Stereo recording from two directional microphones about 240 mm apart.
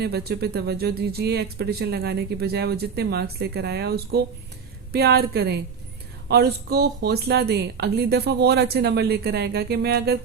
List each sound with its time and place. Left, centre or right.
0.0 s a woman's voice: right